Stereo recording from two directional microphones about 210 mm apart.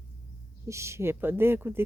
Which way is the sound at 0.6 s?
15° right (ahead or behind).